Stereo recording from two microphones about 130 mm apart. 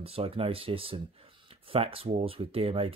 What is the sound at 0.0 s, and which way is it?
Speech, 50° right (ahead or behind).